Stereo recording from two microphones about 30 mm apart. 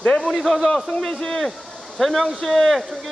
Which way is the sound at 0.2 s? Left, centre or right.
Centre.